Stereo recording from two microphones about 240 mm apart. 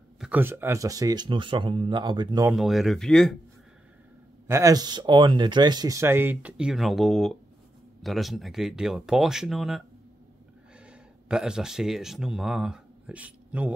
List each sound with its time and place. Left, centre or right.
0.2 s speech: centre
2.5 s speech: centre
4.5 s speech: centre
10.9 s speech: centre